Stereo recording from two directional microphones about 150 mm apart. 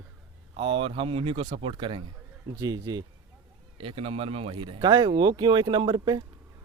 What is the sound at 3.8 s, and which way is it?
Speech, 40° right (ahead or behind).